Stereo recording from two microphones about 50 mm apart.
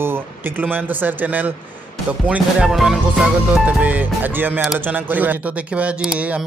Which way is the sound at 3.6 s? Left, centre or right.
Right.